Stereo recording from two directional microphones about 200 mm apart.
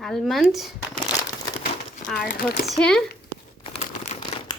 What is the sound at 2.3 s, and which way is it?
Speech, 50° left (ahead or behind).